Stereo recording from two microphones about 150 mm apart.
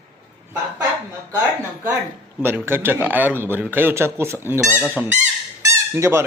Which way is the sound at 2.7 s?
15° right (ahead or behind).